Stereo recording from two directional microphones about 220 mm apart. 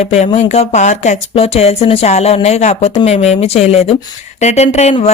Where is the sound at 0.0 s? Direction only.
30° left (ahead or behind).